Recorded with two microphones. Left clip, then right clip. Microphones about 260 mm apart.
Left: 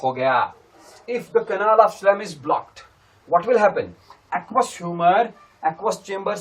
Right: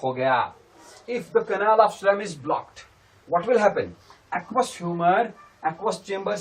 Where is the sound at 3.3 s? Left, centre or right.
Left.